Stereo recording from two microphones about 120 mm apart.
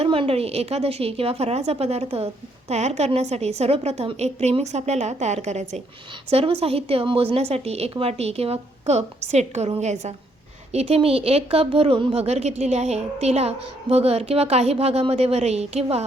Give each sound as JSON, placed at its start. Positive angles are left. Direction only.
{"t": 0.0, "sound": "a woman's voice", "side_deg": -50}
{"t": 6.3, "sound": "a woman's voice", "side_deg": -55}
{"t": 10.7, "sound": "a woman's voice", "side_deg": -55}